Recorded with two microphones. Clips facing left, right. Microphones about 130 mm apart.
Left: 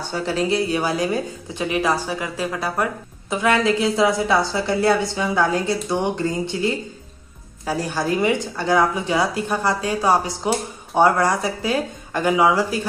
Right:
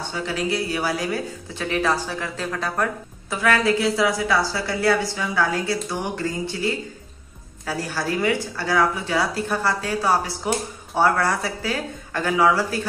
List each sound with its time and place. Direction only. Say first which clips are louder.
0.1 s speech: left 5 dB; 35° left (ahead or behind); by 12.8 s 15° left (ahead or behind)